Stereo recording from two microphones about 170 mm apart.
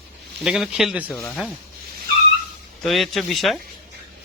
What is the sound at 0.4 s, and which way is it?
Speech, 5° right (ahead or behind).